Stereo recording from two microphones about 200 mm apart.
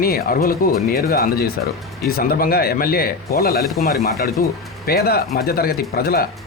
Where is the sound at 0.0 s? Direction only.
45° left (ahead or behind).